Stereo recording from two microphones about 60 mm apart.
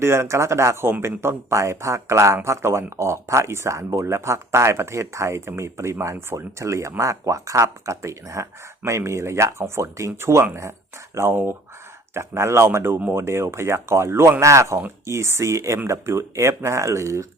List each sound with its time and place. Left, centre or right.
0.0 s speech: right